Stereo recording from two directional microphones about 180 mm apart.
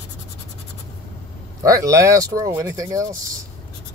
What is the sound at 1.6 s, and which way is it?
Speech, 20° right (ahead or behind).